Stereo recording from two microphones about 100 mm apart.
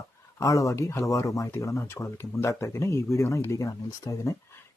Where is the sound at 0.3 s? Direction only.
30° left (ahead or behind).